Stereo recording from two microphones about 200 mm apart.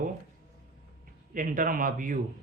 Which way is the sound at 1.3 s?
40° right (ahead or behind).